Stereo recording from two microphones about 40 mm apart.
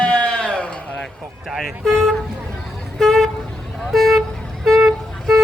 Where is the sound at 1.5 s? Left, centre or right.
Centre.